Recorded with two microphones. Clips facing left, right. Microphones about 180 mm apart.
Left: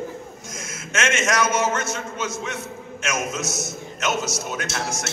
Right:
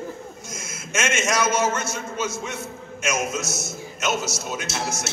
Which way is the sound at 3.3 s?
15° left (ahead or behind).